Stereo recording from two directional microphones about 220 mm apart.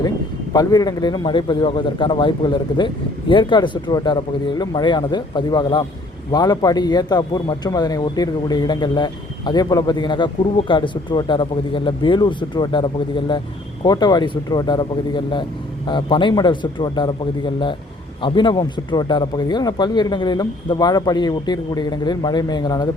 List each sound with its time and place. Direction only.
0.5 s a man's voice: 15° left (ahead or behind)